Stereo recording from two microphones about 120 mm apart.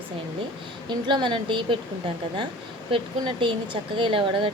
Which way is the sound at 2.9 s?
45° right (ahead or behind).